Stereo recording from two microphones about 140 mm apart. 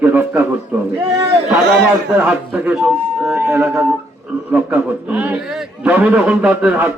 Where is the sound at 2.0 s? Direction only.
10° right (ahead or behind).